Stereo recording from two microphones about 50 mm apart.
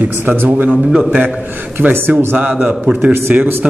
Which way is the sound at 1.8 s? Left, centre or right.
Right.